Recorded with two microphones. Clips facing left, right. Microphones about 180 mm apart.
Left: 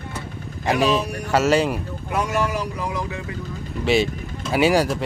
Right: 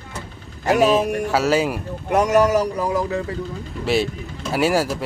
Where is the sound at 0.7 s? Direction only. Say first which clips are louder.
Right 3 dB; 5° right (ahead or behind).